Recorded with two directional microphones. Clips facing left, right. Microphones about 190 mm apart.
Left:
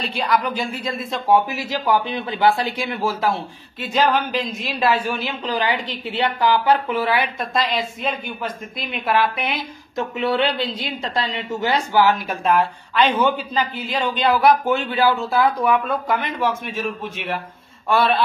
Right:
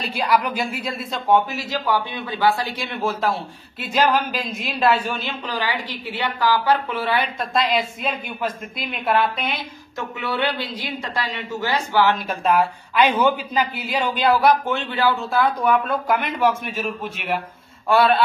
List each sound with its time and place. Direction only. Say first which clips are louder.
0.0 s a man's voice: even; 10° right (ahead or behind)
1.3 s a woman's voice: left 1 dB; 10° left (ahead or behind)
2.1 s speech: left 2 dB; 25° left (ahead or behind)
3.0 s a woman's voice: even; 5° left (ahead or behind)
5.5 s a woman's voice: left 4 dB; 20° left (ahead or behind)
7.3 s a woman's voice: right 1 dB; centre (ahead or behind)
9.9 s speech: left 5 dB; 20° left (ahead or behind)
12.3 s a woman's voice: even; centre (ahead or behind)
12.9 s a man's voice: even; 10° right (ahead or behind)
14.4 s a woman's voice: left 2 dB; centre (ahead or behind)
17.8 s a woman's voice: right 2 dB; centre (ahead or behind)